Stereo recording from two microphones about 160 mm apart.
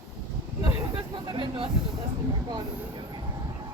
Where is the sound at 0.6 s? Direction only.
25° right (ahead or behind).